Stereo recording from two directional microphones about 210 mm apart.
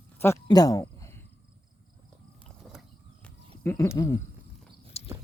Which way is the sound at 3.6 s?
15° left (ahead or behind).